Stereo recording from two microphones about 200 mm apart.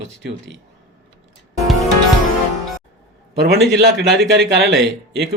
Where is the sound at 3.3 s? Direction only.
55° right (ahead or behind).